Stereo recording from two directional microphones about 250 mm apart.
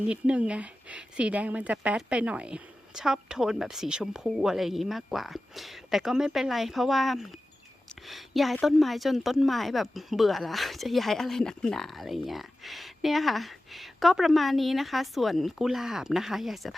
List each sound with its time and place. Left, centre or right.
0.1 s a woman's voice: centre